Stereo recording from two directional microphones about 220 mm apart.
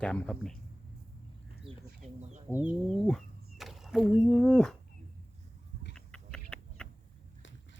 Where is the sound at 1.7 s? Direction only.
25° right (ahead or behind).